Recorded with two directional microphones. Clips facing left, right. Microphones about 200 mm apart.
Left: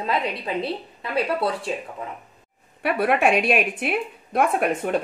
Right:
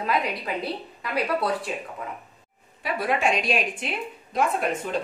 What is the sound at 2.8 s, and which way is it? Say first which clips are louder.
A woman's voice: left 5 dB; 60° left (ahead or behind).